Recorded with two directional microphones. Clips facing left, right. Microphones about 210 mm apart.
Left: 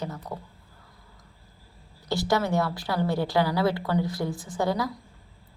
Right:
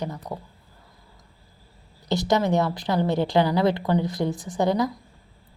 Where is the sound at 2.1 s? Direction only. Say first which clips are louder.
Right 3 dB; 20° right (ahead or behind).